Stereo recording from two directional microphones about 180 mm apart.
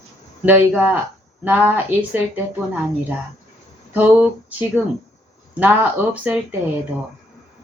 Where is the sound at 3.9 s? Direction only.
10° right (ahead or behind).